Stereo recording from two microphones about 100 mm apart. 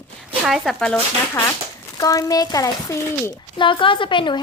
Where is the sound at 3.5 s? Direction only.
55° left (ahead or behind).